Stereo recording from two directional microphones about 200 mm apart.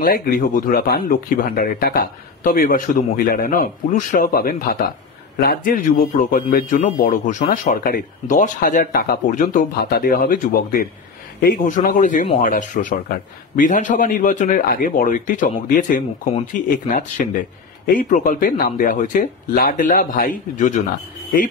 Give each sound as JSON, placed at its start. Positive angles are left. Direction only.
{"t": 0.0, "sound": "a man's voice", "side_deg": 45}